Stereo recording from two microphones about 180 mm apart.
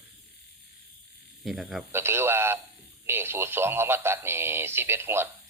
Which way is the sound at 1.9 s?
15° right (ahead or behind).